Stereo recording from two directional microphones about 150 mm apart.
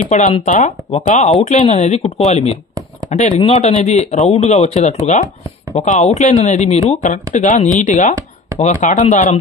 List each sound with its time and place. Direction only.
0.1 s speech: 55° left (ahead or behind)